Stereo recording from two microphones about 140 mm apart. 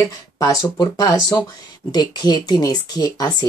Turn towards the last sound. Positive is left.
turn(degrees=25)  # may be behind; listen again after turning